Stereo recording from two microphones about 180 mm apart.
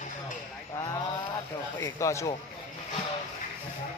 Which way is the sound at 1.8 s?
15° left (ahead or behind).